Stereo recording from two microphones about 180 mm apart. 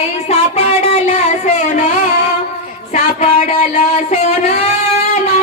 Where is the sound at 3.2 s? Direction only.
40° left (ahead or behind).